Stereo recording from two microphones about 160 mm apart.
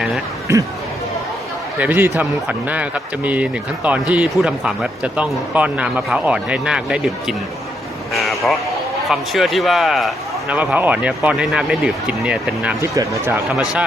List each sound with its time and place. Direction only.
1.8 s speech: 10° right (ahead or behind)
8.1 s vehicle: centre (ahead or behind)
9.0 s speech: centre (ahead or behind)
12.9 s speech: 20° right (ahead or behind)